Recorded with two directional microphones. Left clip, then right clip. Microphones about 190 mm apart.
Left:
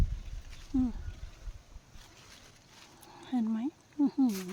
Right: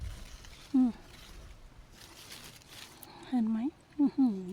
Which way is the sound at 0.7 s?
20° right (ahead or behind).